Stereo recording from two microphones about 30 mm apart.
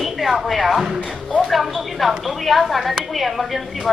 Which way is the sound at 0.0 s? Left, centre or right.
Centre.